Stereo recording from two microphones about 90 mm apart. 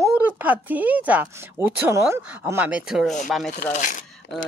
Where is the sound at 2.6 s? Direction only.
10° right (ahead or behind).